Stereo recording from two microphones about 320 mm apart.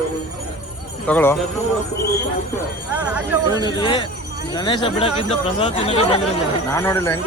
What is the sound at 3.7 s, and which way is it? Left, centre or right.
Speech, centre.